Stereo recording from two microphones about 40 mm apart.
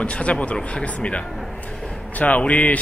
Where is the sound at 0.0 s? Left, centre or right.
Left.